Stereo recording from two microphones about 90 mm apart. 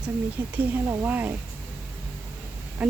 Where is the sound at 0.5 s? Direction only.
20° right (ahead or behind).